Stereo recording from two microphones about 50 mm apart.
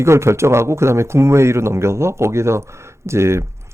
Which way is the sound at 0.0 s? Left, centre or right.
Right.